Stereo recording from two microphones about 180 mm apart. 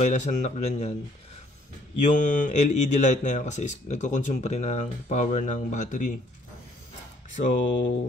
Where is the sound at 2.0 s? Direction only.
45° left (ahead or behind).